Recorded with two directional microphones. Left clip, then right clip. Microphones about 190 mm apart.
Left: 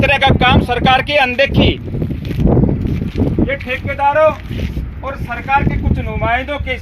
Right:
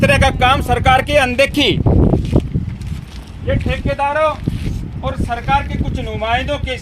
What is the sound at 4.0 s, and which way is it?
Speech, 20° left (ahead or behind).